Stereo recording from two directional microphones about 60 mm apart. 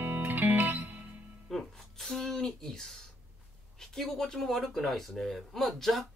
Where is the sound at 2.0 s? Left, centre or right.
Centre.